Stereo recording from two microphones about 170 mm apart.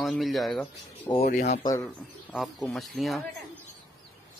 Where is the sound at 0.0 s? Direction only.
Centre (ahead or behind).